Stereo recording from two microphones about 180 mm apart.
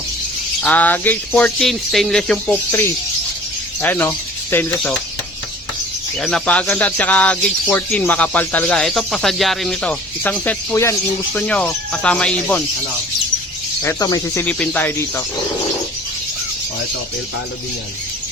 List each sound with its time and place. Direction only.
0.6 s speech: 10° left (ahead or behind)
6.1 s speech: 5° left (ahead or behind)
13.8 s speech: 15° left (ahead or behind)
14.4 s speech: 5° left (ahead or behind)